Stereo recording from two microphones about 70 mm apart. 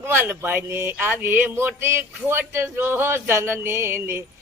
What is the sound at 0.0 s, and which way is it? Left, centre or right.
Speech, right.